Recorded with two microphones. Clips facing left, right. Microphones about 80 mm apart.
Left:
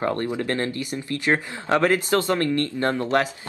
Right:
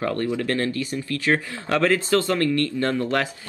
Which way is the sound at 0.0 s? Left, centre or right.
Left.